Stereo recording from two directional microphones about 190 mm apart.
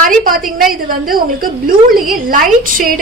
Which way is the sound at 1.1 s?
50° right (ahead or behind).